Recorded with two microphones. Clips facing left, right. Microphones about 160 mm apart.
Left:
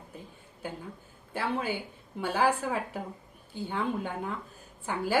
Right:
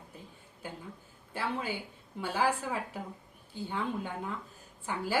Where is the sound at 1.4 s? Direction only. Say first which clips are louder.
Left 4 dB; 55° left (ahead or behind).